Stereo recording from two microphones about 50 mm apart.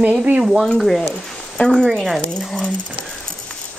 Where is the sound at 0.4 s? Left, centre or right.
Centre.